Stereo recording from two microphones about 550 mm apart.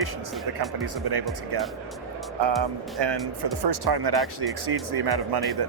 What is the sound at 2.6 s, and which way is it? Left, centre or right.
Speech, right.